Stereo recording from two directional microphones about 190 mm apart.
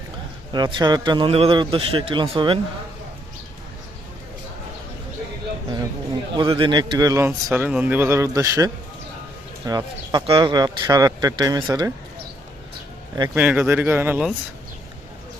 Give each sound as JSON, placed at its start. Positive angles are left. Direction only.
{"t": 0.5, "sound": "speech", "side_deg": -20}
{"t": 6.3, "sound": "a man's voice", "side_deg": -25}
{"t": 13.1, "sound": "a man's voice", "side_deg": -10}